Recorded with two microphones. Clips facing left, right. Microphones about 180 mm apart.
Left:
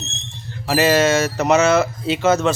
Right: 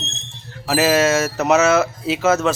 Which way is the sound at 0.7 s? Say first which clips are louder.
Even; 5° right (ahead or behind).